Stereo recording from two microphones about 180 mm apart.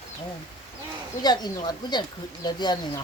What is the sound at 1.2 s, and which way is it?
Speech, 25° left (ahead or behind).